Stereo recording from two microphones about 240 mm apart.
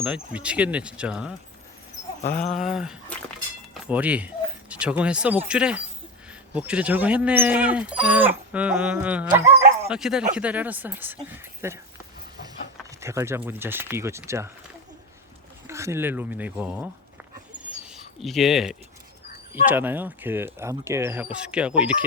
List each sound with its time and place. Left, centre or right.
0.0 s dog: centre
2.2 s speech: left
2.6 s dog: centre
10.3 s speech: centre
13.0 s speech: centre
15.6 s speech: centre
17.6 s a sound: centre
19.6 s speech: centre
21.3 s dog: centre